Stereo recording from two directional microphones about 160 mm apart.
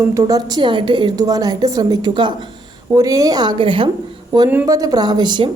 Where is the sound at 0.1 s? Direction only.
20° right (ahead or behind).